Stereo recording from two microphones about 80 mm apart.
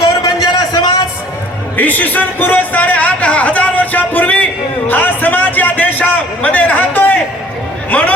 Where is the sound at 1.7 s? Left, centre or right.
Left.